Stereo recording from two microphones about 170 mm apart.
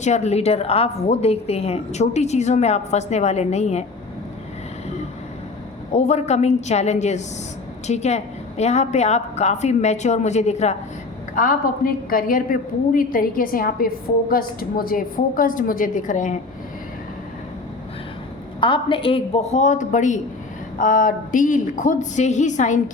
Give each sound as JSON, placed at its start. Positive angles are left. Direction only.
{"t": 0.0, "sound": "a woman's voice", "side_deg": 40}
{"t": 5.9, "sound": "a woman's voice", "side_deg": 40}
{"t": 11.3, "sound": "a woman's voice", "side_deg": 55}
{"t": 18.6, "sound": "a woman's voice", "side_deg": 30}